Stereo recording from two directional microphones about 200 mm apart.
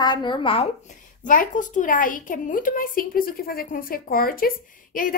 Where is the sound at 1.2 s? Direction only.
40° left (ahead or behind).